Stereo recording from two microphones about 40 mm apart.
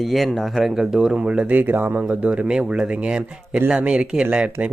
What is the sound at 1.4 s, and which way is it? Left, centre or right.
Speech, right.